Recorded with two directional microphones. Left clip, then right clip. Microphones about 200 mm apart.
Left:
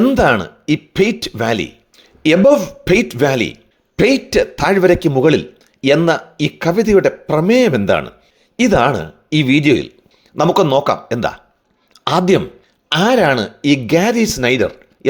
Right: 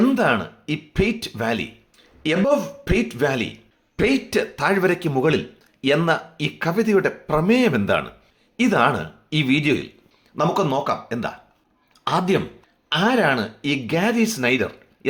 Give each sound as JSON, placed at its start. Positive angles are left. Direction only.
{"t": 0.0, "sound": "speech", "side_deg": 30}